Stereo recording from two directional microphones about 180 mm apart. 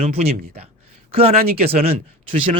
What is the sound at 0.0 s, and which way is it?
Speech, 40° right (ahead or behind).